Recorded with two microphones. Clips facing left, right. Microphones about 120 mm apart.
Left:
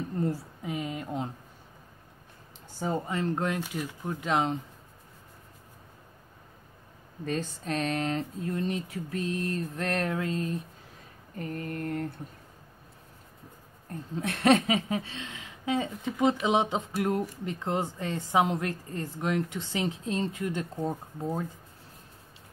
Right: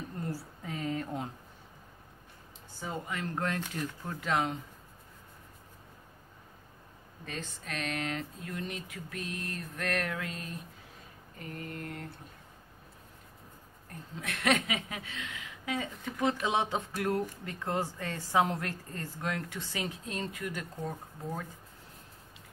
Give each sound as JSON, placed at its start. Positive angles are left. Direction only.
{"t": 0.2, "sound": "a woman's voice", "side_deg": 20}
{"t": 2.8, "sound": "speech", "side_deg": 35}
{"t": 7.2, "sound": "speech", "side_deg": 35}
{"t": 11.3, "sound": "mantra", "side_deg": 45}
{"t": 13.8, "sound": "speech", "side_deg": 30}